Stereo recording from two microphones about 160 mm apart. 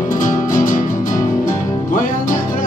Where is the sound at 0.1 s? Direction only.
55° left (ahead or behind).